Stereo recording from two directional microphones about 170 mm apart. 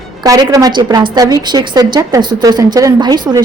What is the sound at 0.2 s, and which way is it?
A woman's voice, 20° right (ahead or behind).